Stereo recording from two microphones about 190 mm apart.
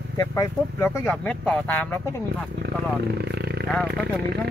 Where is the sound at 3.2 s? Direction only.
60° right (ahead or behind).